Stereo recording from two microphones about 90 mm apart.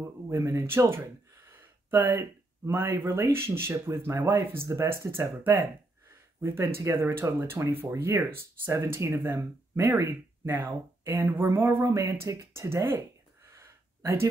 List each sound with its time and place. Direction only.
0.0 s speech: 30° right (ahead or behind)